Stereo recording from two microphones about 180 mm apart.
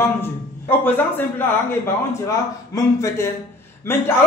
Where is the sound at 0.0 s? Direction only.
10° left (ahead or behind).